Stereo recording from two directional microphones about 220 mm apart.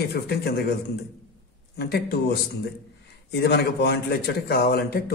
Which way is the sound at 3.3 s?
45° left (ahead or behind).